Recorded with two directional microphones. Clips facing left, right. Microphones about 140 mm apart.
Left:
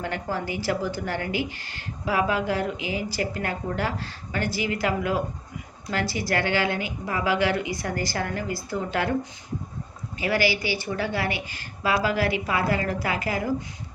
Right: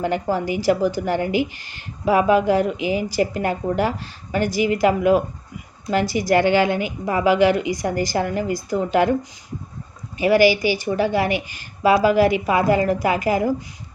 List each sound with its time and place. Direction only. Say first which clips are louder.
0.0 s a woman's voice: right 8 dB; 15° right (ahead or behind)
10.2 s a woman's voice: right 9 dB; 15° right (ahead or behind)